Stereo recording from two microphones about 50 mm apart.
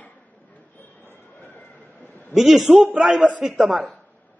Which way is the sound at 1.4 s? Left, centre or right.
Left.